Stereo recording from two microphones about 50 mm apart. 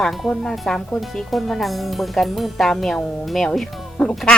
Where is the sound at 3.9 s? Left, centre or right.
Left.